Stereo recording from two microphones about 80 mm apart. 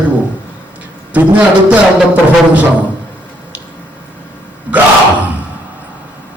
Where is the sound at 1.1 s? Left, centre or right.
Centre.